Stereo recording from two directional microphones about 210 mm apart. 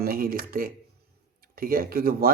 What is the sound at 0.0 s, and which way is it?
Speech, 45° right (ahead or behind).